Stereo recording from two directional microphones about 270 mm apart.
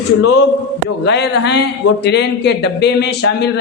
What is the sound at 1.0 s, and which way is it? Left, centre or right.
Speech, left.